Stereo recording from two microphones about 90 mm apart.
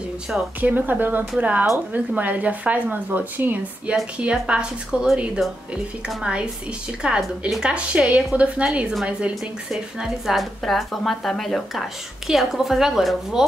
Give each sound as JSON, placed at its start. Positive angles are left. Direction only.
{"t": 0.6, "sound": "a woman's voice", "side_deg": -20}